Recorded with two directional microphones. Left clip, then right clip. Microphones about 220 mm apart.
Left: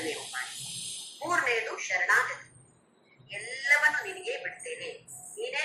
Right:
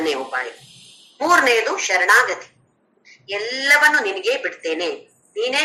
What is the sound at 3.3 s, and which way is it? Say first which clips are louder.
A woman's voice: right 10 dB; 50° right (ahead or behind).